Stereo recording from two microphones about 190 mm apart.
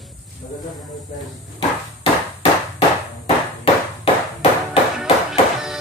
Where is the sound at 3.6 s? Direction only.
30° left (ahead or behind).